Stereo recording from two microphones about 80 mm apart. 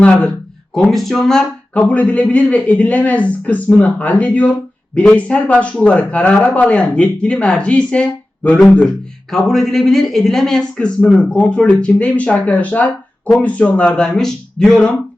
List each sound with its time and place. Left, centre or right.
0.7 s speech: centre